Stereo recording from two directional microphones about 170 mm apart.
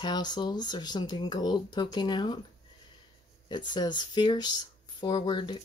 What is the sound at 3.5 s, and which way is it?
Speech, 25° left (ahead or behind).